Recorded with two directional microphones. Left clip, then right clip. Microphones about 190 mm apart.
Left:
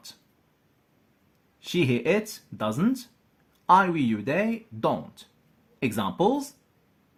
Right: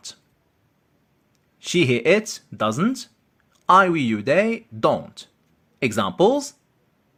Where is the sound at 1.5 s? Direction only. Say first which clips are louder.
Right 6 dB; 25° right (ahead or behind).